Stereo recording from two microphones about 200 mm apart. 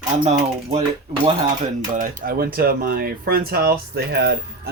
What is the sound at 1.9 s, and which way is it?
Speech, 45° right (ahead or behind).